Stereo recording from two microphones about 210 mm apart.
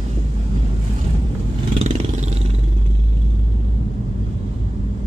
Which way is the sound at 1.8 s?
30° right (ahead or behind).